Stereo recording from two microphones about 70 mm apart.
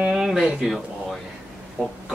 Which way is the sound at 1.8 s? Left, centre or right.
Centre.